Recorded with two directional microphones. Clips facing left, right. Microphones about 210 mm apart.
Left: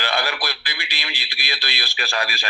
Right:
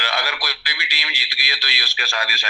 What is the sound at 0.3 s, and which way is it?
A man's voice, 50° left (ahead or behind).